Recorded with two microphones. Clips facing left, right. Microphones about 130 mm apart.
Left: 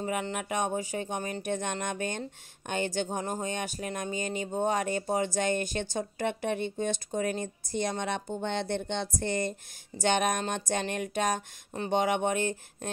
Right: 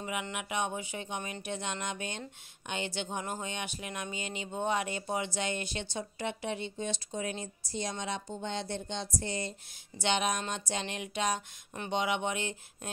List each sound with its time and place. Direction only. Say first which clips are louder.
0.0 s speech: left 5 dB; 40° left (ahead or behind)